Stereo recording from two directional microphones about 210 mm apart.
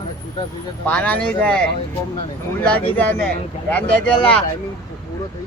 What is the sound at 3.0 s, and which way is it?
Speech, 5° left (ahead or behind).